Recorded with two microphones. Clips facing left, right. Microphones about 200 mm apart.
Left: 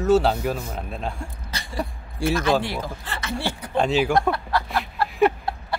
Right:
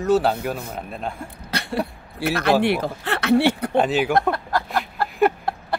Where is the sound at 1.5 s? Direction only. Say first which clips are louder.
Right 5 dB; 65° right (ahead or behind).